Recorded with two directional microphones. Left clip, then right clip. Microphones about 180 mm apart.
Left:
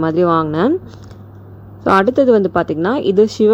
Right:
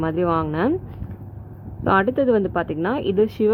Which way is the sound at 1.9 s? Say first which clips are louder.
Left 7 dB; 30° left (ahead or behind).